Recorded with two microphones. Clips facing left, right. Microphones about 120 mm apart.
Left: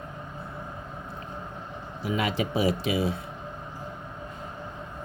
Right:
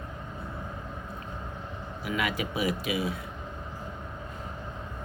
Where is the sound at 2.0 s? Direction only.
30° left (ahead or behind).